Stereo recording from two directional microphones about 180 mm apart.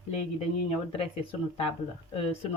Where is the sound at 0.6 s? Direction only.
35° left (ahead or behind).